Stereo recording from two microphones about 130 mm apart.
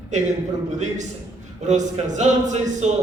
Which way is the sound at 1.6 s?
70° right (ahead or behind).